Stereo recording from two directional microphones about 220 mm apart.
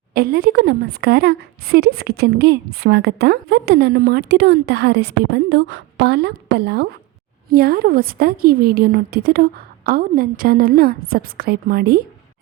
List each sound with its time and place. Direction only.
0.1 s speech: 45° right (ahead or behind)